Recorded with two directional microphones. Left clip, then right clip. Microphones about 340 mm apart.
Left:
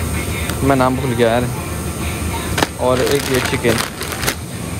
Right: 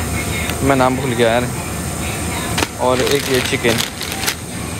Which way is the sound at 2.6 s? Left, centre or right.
Centre.